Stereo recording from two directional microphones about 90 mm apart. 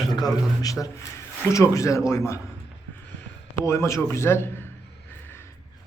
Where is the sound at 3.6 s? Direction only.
30° left (ahead or behind).